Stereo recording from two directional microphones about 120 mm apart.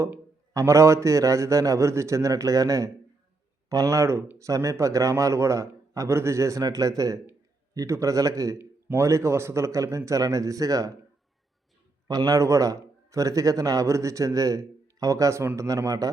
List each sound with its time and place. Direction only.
0.0 s a man's voice: 25° right (ahead or behind)
12.0 s a man's voice: 30° right (ahead or behind)